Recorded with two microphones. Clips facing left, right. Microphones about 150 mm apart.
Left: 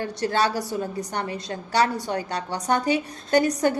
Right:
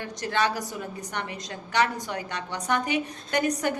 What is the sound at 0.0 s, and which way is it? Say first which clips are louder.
A woman's voice: left 3 dB; 35° left (ahead or behind).